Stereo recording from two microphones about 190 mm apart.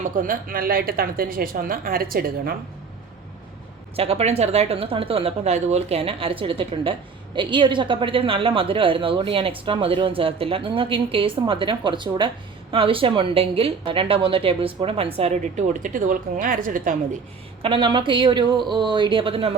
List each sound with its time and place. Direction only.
0.0 s speech: 45° right (ahead or behind)
3.9 s a woman's voice: 30° right (ahead or behind)
17.6 s a woman's voice: 25° right (ahead or behind)